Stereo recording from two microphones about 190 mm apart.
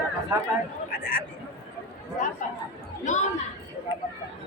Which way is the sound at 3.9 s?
25° left (ahead or behind).